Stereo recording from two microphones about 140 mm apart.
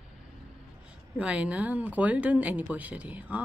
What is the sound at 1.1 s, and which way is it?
Speech, 10° right (ahead or behind).